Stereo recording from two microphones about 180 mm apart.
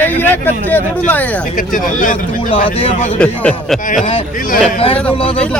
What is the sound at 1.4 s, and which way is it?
Speech, 50° left (ahead or behind).